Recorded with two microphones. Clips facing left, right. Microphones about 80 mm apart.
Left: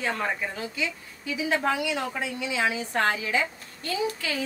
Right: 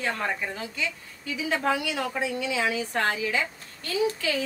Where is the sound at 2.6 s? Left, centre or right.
Left.